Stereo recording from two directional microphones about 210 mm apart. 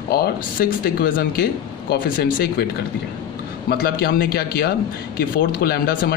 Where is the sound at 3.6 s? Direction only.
45° left (ahead or behind).